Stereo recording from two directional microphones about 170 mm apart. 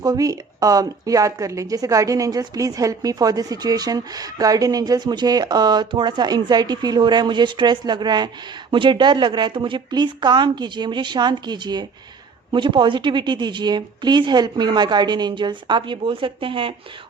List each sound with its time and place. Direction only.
0.0 s speech: 20° right (ahead or behind)